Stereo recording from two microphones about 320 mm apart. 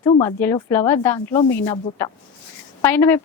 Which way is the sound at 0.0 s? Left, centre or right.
Centre.